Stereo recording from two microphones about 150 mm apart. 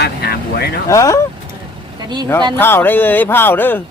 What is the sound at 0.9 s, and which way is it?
Speech, 20° left (ahead or behind).